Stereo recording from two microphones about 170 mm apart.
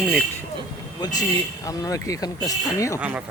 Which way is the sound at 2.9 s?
10° right (ahead or behind).